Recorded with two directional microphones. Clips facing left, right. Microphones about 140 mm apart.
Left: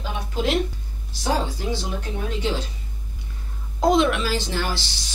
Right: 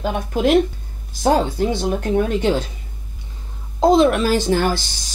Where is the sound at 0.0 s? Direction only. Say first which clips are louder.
Right 7 dB; 55° right (ahead or behind).